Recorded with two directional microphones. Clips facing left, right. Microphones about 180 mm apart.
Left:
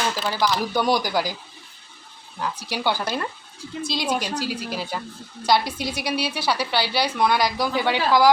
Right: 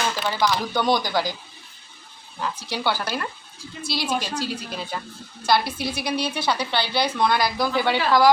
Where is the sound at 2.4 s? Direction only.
10° left (ahead or behind).